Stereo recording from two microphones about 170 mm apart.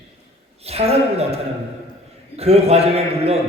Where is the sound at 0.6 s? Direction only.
35° right (ahead or behind).